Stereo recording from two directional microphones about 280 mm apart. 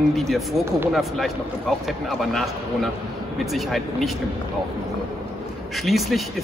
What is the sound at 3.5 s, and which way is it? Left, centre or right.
Speech, centre.